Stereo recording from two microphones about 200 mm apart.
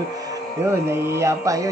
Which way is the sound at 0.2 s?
15° right (ahead or behind).